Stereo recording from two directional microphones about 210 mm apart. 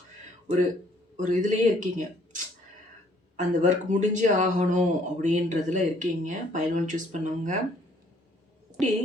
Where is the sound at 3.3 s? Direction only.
35° right (ahead or behind).